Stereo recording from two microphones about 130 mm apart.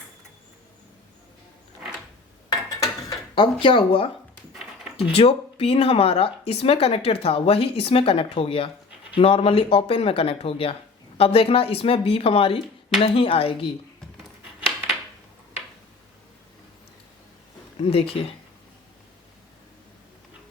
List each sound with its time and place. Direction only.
2.5 s dishes: 25° left (ahead or behind)
3.3 s speech: 40° left (ahead or behind)
4.5 s a sound: 5° right (ahead or behind)
5.1 s speech: 50° left (ahead or behind)
17.7 s speech: 50° left (ahead or behind)